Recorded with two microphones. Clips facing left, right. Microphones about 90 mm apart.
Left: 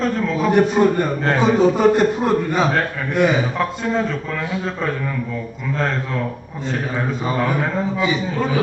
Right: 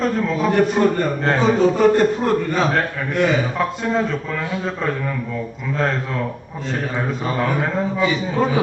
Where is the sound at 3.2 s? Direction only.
15° left (ahead or behind).